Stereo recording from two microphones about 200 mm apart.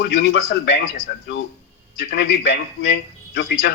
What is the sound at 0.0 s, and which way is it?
Speech, 65° left (ahead or behind).